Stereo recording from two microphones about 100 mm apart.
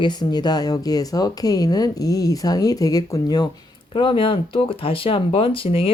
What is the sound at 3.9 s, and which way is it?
Speech, 55° left (ahead or behind).